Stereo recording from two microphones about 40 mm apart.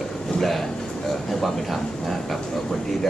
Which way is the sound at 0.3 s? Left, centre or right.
Centre.